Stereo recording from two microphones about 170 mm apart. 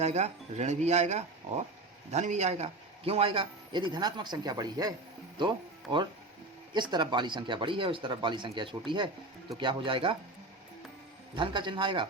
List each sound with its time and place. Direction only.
0.0 s a man's voice: 40° right (ahead or behind)
11.3 s speech: 30° right (ahead or behind)